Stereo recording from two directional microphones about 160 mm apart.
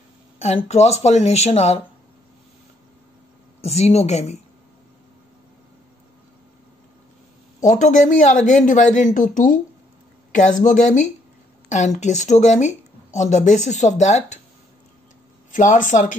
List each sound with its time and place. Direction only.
0.4 s speech: 40° left (ahead or behind)
3.6 s a woman's voice: 40° left (ahead or behind)
7.6 s speech: 50° left (ahead or behind)
15.5 s speech: 50° left (ahead or behind)